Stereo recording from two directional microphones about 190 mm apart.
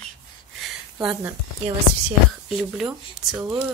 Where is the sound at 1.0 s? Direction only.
5° right (ahead or behind).